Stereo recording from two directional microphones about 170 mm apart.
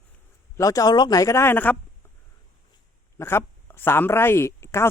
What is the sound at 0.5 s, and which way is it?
Speech, 20° left (ahead or behind).